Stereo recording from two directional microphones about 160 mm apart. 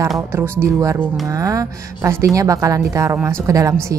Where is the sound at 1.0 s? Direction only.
Centre (ahead or behind).